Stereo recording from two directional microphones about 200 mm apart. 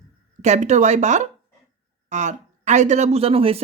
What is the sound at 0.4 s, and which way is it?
Speech, 35° right (ahead or behind).